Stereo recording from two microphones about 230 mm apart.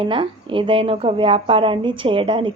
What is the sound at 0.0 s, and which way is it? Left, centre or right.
A woman's voice, right.